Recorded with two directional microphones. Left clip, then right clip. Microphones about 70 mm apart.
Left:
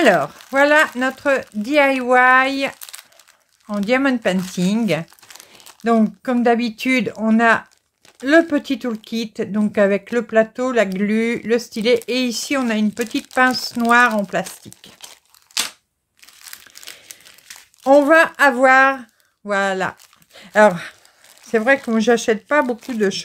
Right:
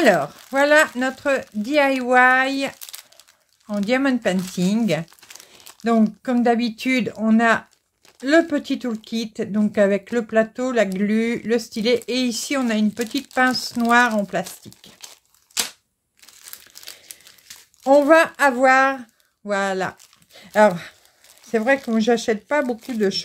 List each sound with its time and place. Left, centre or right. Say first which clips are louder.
0.0 s speech: left 2 dB; centre
2.8 s crumpling: left 1 dB; centre
3.8 s speech: left 3 dB; centre
13.1 s speech: left 3 dB; centre
13.7 s speech: left 3 dB; centre
16.7 s crumpling: left 2 dB; centre
17.5 s crumpling: left 3 dB; left
18.5 s speech: left 3 dB; centre; by 23.2 s left